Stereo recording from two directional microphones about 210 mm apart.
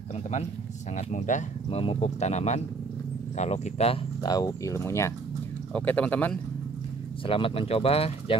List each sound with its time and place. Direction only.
0.9 s speech: 35° left (ahead or behind); by 6.3 s 5° left (ahead or behind)
7.2 s speech: 25° left (ahead or behind)